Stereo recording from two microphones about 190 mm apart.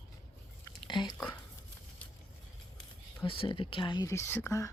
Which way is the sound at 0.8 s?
25° left (ahead or behind).